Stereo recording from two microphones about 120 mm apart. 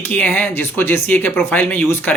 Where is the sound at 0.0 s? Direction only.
15° left (ahead or behind).